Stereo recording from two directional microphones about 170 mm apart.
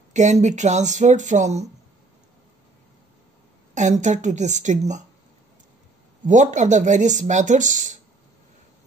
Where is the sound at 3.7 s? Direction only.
45° right (ahead or behind).